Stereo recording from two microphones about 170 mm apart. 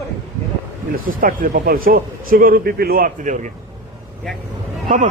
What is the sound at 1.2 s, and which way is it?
Speech, 55° right (ahead or behind).